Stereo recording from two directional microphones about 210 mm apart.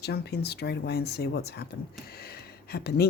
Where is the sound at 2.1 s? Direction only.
45° left (ahead or behind).